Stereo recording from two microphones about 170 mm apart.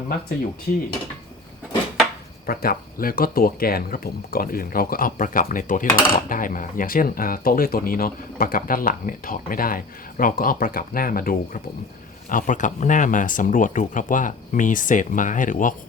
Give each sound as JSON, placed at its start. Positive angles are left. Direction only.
{"t": 2.5, "sound": "speech", "side_deg": 60}